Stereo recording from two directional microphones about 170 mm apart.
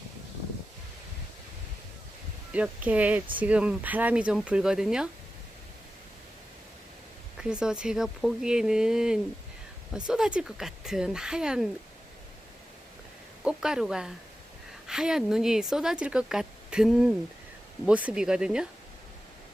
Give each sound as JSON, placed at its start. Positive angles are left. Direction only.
{"t": 2.5, "sound": "speech", "side_deg": -10}
{"t": 7.3, "sound": "speech", "side_deg": -5}
{"t": 13.4, "sound": "speech", "side_deg": -5}